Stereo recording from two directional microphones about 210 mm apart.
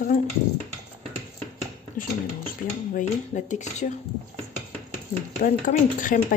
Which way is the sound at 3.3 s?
35° left (ahead or behind).